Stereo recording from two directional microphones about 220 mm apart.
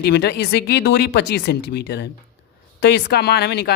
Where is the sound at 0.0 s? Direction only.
50° left (ahead or behind).